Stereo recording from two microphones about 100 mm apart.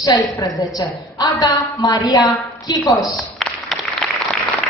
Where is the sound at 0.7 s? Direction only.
35° left (ahead or behind).